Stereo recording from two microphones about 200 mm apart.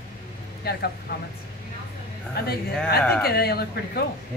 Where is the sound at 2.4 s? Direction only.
55° left (ahead or behind).